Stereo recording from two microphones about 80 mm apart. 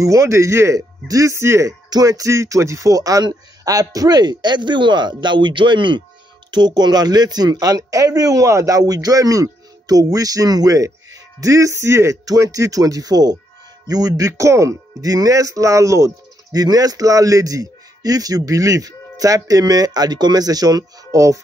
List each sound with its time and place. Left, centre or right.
0.0 s speech: right
1.9 s a man's voice: right
6.5 s speech: right
12.3 s speech: right
16.5 s speech: right